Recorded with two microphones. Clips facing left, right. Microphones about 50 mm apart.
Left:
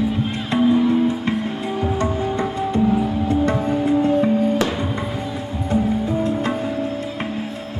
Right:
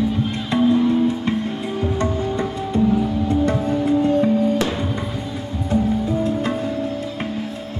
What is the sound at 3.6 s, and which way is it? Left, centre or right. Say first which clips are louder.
Music: even; centre.